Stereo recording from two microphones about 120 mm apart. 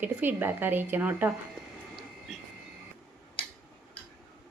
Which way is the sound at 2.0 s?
Centre (ahead or behind).